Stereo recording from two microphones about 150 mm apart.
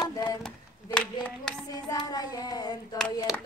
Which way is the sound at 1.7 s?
25° left (ahead or behind).